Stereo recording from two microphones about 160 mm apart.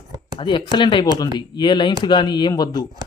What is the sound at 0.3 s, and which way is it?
Speech, 30° left (ahead or behind).